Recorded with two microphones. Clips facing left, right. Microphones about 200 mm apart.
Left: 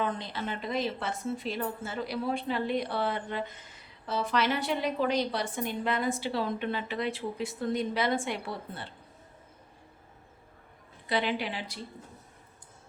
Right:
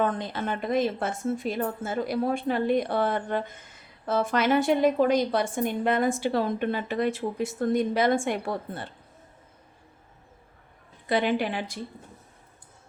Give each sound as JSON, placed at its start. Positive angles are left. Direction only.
{"t": 0.0, "sound": "a woman's voice", "side_deg": -50}
{"t": 11.1, "sound": "a woman's voice", "side_deg": -50}